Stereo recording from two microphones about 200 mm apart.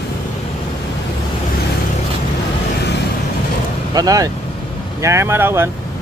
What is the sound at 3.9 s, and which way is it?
Speech, 20° right (ahead or behind).